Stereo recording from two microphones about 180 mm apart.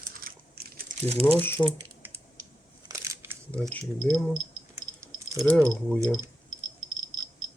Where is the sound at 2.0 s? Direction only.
10° right (ahead or behind).